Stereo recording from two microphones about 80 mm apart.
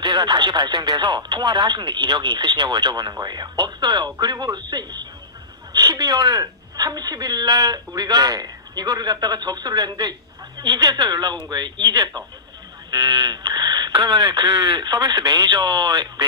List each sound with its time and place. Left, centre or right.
0.0 s speech: right
5.7 s speech: right